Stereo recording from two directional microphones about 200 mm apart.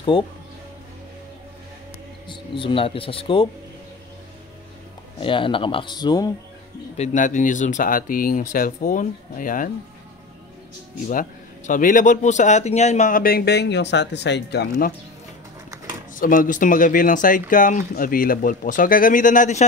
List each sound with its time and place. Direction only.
0.1 s speech: 25° left (ahead or behind)
2.2 s speech: 25° left (ahead or behind)
5.2 s speech: 25° left (ahead or behind)
7.0 s speech: 40° left (ahead or behind)
11.1 s a man's voice: 40° left (ahead or behind)
16.2 s a man's voice: 45° left (ahead or behind)